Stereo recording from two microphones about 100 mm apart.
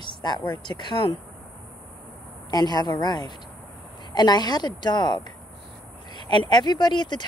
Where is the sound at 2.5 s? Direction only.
45° left (ahead or behind).